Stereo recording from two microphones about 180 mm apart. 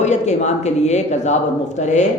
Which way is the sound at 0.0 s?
40° left (ahead or behind).